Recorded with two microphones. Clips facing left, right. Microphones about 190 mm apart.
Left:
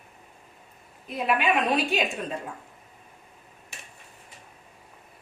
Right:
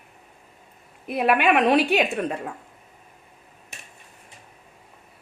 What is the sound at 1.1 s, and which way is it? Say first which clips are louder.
Speech: right 5 dB; 65° right (ahead or behind).